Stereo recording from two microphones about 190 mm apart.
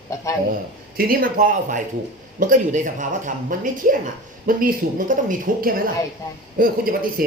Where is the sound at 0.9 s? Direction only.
50° right (ahead or behind).